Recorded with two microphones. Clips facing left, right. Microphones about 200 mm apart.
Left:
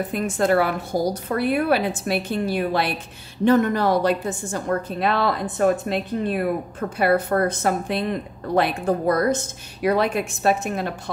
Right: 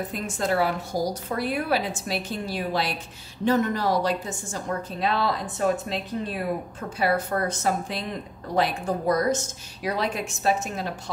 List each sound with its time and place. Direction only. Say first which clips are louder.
0.1 s a woman's voice: left 8 dB; 60° left (ahead or behind)